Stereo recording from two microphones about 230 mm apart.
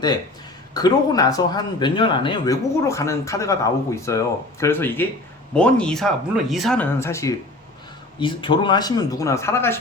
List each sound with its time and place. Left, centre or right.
0.7 s speech: centre